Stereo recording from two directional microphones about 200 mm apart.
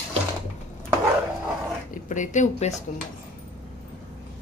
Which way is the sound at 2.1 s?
40° left (ahead or behind).